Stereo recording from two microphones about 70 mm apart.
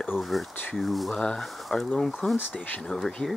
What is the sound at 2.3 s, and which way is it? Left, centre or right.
Speech, left.